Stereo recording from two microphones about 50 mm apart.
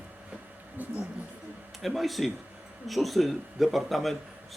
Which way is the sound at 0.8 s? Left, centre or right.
Right.